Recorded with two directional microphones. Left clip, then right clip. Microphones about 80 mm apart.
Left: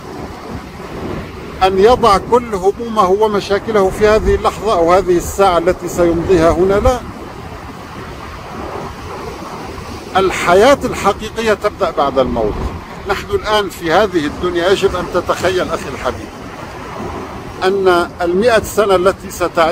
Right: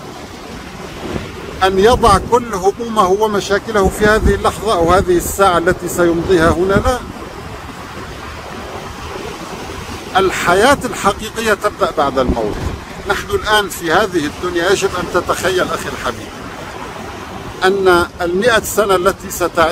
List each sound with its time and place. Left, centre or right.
1.6 s speech: right
6.0 s speech: right
10.1 s speech: right
17.6 s speech: right